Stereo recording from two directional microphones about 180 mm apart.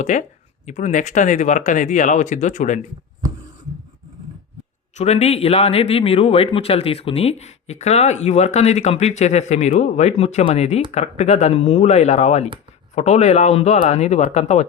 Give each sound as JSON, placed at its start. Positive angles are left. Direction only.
{"t": 0.0, "sound": "speech", "side_deg": 40}
{"t": 4.9, "sound": "speech", "side_deg": 35}